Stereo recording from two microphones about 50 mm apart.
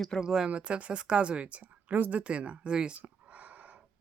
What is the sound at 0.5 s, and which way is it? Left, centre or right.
Speech, right.